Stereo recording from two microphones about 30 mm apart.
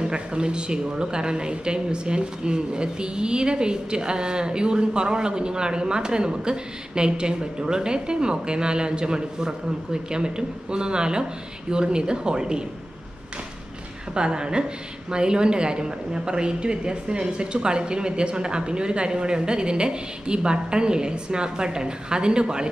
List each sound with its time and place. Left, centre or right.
0.0 s speech: right
14.1 s speech: right